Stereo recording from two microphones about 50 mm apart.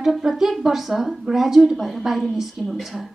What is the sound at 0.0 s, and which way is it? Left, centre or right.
A woman's voice, centre.